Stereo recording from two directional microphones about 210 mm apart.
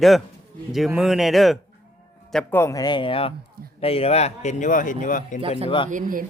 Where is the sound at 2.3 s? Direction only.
10° left (ahead or behind); by 5.4 s 40° left (ahead or behind).